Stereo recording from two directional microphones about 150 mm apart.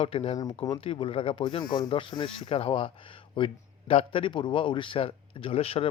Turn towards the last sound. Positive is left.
turn(degrees=40)  # may be behind; listen again after turning